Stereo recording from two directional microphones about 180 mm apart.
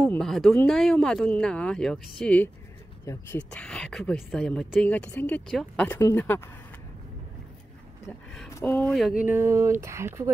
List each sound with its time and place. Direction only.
0.1 s speech: centre (ahead or behind)
8.5 s speech: 10° left (ahead or behind)
8.9 s speech: 5° right (ahead or behind)